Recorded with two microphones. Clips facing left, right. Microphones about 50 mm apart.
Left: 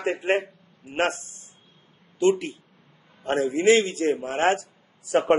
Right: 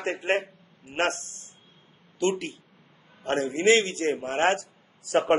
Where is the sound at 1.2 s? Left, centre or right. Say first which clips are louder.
Right 2 dB; right.